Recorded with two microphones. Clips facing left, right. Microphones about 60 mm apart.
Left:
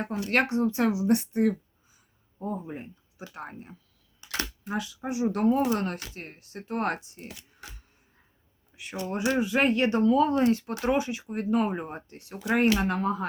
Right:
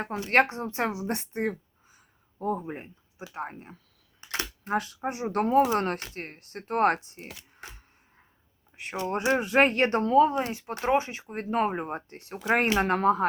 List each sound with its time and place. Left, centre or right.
0.0 s speech: right
1.9 s a sound: right
2.6 s speech: right
4.2 s a sound: right
4.6 s speech: right
8.7 s speech: right
10.2 s speech: right
10.8 s speech: right
12.8 s speech: right